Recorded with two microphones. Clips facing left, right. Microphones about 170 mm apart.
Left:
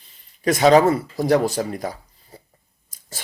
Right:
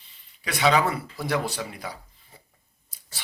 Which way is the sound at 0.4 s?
40° left (ahead or behind).